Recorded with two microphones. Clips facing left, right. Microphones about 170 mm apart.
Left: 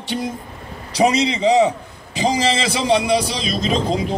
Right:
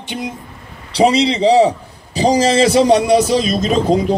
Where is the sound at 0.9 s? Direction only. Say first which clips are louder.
Right 4 dB; 30° right (ahead or behind).